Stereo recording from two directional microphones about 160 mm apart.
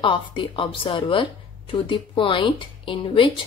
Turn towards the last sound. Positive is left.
turn(degrees=30)  # may be behind; listen again after turning